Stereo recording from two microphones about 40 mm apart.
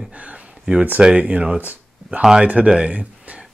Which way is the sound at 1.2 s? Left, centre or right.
Right.